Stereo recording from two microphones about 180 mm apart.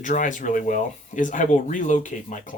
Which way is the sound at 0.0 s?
45° left (ahead or behind).